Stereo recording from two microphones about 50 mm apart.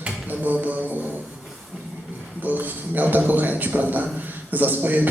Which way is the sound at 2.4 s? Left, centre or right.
Right.